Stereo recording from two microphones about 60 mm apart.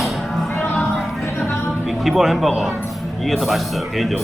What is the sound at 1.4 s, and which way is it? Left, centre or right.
Music, left.